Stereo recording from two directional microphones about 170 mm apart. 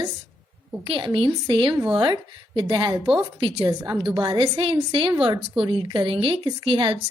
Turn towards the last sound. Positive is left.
turn(degrees=-30)  # may be behind; listen again after turning